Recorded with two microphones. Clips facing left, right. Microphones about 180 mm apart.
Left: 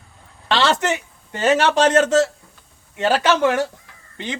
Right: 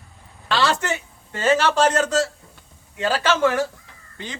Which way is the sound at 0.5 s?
20° left (ahead or behind).